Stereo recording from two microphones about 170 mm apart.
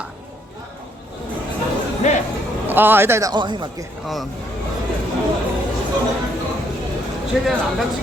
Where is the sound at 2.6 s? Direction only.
10° right (ahead or behind).